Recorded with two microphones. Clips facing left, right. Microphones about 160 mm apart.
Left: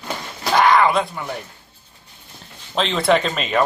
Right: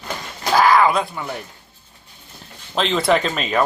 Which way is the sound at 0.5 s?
Centre (ahead or behind).